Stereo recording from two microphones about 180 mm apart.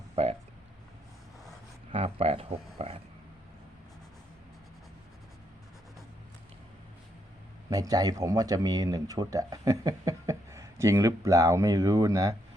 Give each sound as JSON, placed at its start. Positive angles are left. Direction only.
{"t": 0.2, "sound": "burping", "side_deg": -35}
{"t": 1.9, "sound": "speech", "side_deg": -30}
{"t": 7.7, "sound": "speech", "side_deg": -20}